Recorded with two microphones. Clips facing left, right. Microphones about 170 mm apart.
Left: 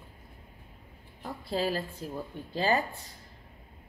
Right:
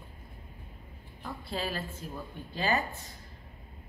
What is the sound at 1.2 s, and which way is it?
Speech, 35° left (ahead or behind).